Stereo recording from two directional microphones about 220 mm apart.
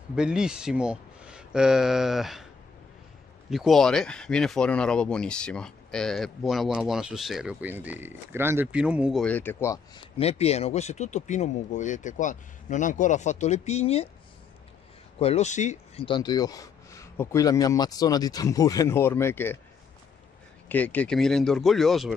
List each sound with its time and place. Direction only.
0.1 s speech: 5° right (ahead or behind)
3.4 s speech: centre (ahead or behind)
10.1 s speech: 30° left (ahead or behind)
15.1 s speech: 30° left (ahead or behind); by 19.6 s 10° left (ahead or behind)
20.6 s speech: 5° left (ahead or behind)